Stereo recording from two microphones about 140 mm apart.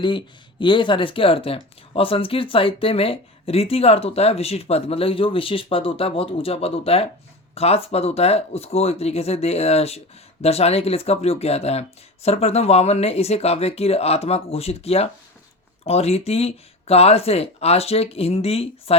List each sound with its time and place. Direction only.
0.6 s speech: 35° left (ahead or behind)